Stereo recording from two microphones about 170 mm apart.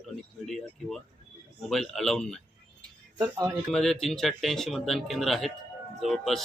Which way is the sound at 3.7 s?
5° left (ahead or behind).